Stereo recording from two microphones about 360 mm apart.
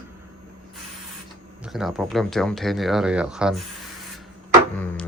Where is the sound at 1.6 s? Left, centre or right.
Centre.